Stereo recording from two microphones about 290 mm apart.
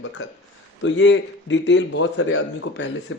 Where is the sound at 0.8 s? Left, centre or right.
Left.